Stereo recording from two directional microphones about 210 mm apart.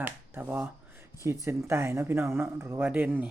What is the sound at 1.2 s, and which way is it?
Speech, 15° right (ahead or behind).